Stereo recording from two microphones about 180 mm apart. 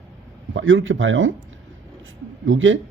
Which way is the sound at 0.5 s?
90° right.